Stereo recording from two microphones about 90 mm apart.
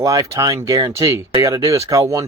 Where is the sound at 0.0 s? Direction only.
40° right (ahead or behind).